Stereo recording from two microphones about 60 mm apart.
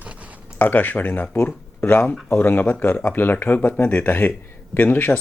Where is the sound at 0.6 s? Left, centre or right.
Left.